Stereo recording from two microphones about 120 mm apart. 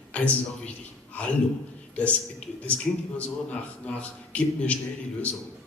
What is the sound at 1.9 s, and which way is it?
Speech, 10° left (ahead or behind).